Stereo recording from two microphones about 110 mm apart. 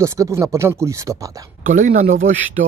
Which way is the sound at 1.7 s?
90° right.